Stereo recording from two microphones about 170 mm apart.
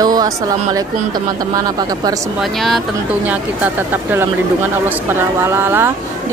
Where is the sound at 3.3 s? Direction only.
10° right (ahead or behind).